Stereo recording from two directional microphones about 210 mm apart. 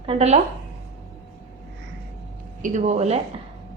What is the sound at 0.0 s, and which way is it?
Speech, 30° right (ahead or behind).